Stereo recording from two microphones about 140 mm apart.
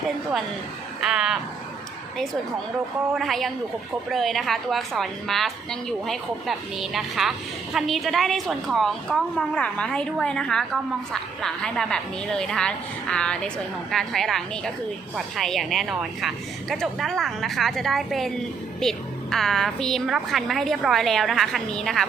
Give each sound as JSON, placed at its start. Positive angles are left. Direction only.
{"t": 1.0, "sound": "a woman's voice", "side_deg": -5}
{"t": 3.2, "sound": "a woman's voice", "side_deg": 0}